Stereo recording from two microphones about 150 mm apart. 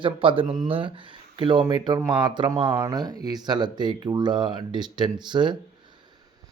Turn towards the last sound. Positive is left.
turn(degrees=-30)  # may be behind; listen again after turning